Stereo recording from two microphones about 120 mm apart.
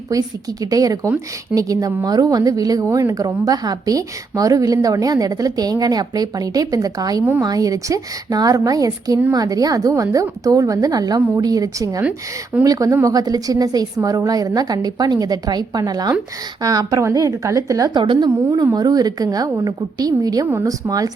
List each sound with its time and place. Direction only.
0.1 s a woman's voice: 30° right (ahead or behind)